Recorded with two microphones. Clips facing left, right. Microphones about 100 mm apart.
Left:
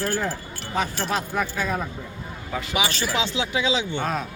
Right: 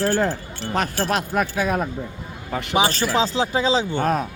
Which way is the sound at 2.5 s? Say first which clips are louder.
Right 3 dB; 65° right (ahead or behind).